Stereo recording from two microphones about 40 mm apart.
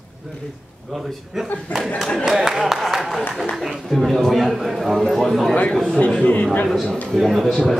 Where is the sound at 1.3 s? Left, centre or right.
Centre.